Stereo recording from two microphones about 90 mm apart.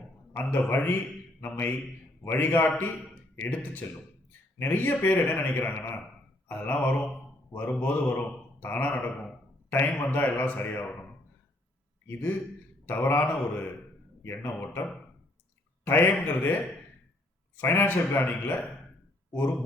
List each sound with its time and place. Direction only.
0.3 s a man's voice: 25° left (ahead or behind)
12.8 s a man's voice: 25° left (ahead or behind)